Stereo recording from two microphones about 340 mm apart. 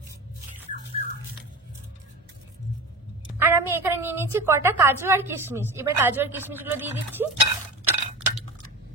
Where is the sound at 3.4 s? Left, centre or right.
Centre.